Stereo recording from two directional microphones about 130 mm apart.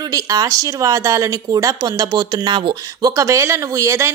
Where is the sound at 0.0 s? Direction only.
25° right (ahead or behind).